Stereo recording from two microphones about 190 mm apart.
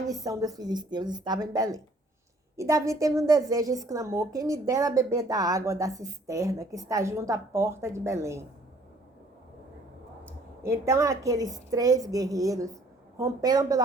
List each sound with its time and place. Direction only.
0.1 s a woman's voice: 20° right (ahead or behind)
10.2 s a woman's voice: 15° right (ahead or behind)